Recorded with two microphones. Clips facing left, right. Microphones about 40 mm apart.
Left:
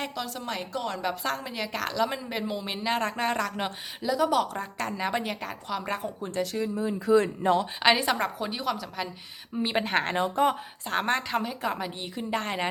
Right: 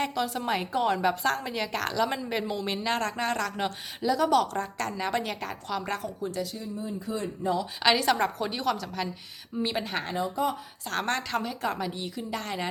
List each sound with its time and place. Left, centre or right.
0.0 s a woman's voice: centre
1.2 s a woman's voice: centre
6.4 s speech: left
7.8 s a woman's voice: centre
8.1 s a woman's voice: centre
9.7 s speech: left
10.8 s a woman's voice: centre
11.9 s a woman's voice: left